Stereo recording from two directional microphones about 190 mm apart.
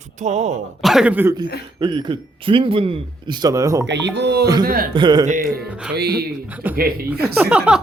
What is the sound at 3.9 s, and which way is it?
Speech, 60° right (ahead or behind).